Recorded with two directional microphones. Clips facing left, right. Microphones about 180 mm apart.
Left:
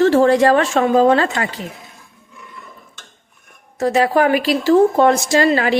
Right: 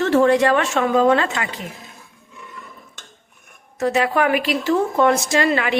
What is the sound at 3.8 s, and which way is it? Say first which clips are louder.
A woman's voice: left 4 dB; 35° left (ahead or behind).